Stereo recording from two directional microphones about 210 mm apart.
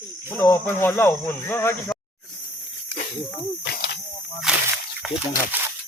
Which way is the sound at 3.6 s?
45° left (ahead or behind).